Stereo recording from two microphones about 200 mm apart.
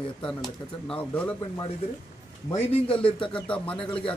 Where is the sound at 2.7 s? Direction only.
30° left (ahead or behind).